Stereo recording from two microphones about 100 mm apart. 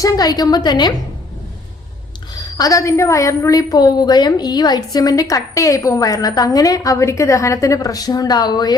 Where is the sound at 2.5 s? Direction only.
35° left (ahead or behind).